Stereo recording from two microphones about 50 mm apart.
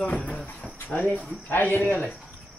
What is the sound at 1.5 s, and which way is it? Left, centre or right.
Speech, left.